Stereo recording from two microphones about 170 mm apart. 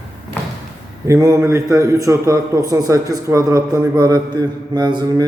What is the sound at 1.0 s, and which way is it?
A man's voice, 20° right (ahead or behind).